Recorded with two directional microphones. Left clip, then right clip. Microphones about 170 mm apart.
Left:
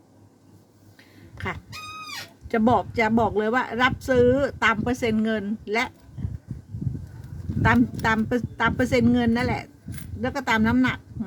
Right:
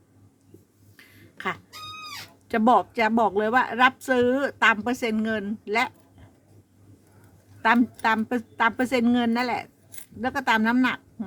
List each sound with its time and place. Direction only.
0.9 s a sound: 20° right (ahead or behind)
2.5 s speech: 15° right (ahead or behind)
7.6 s speech: 15° right (ahead or behind)